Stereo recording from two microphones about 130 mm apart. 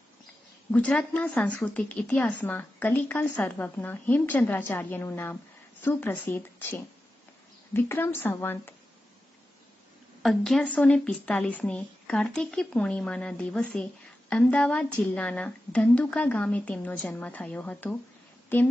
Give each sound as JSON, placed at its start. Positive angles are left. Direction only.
{"t": 0.7, "sound": "speech", "side_deg": 10}
{"t": 10.2, "sound": "speech", "side_deg": 0}